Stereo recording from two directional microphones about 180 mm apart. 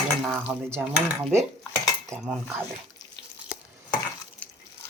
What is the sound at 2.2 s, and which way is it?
Speech, centre (ahead or behind).